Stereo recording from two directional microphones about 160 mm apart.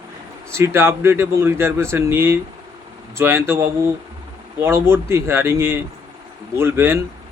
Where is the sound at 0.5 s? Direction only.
15° right (ahead or behind).